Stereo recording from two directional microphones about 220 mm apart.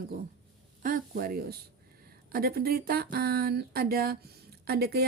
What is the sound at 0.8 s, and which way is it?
Speech, 40° right (ahead or behind).